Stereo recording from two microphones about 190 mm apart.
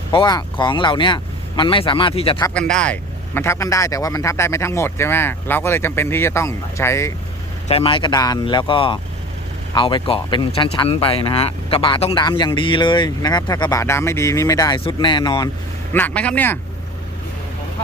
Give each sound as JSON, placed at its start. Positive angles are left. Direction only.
{"t": 0.1, "sound": "speech", "side_deg": 25}
{"t": 2.6, "sound": "speech", "side_deg": 5}
{"t": 7.7, "sound": "speech", "side_deg": 30}
{"t": 15.9, "sound": "speech", "side_deg": 10}